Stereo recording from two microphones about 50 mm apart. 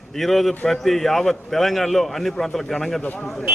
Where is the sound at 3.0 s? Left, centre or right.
Left.